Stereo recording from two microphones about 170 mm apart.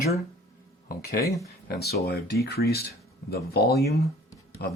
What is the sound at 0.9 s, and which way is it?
Speech, 60° left (ahead or behind).